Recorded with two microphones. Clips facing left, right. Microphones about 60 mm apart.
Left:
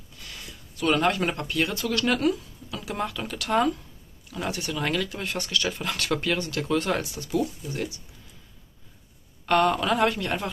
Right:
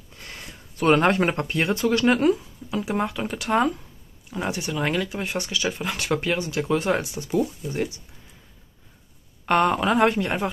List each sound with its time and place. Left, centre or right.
0.1 s speech: right
9.5 s speech: right